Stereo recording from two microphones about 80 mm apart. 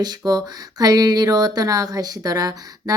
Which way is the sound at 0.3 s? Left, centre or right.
Right.